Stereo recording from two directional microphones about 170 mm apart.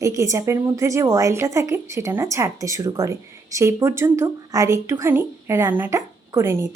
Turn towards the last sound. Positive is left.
turn(degrees=-15)  # may be behind; listen again after turning